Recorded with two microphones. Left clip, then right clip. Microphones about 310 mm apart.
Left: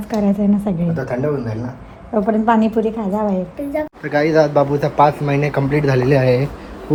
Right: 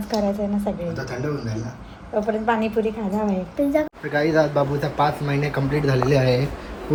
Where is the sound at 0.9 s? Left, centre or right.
Centre.